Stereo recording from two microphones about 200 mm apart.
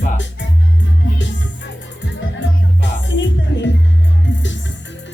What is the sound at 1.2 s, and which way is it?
Music, 65° left (ahead or behind).